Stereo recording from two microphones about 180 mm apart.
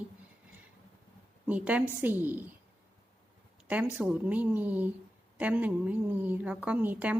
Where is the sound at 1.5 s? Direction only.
10° right (ahead or behind).